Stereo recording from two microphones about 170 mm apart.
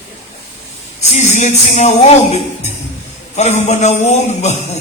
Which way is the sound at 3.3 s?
40° left (ahead or behind).